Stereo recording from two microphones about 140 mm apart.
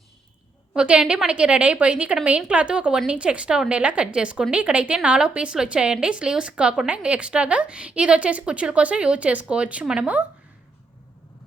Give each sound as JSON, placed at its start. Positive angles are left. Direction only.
{"t": 0.7, "sound": "a woman's voice", "side_deg": -10}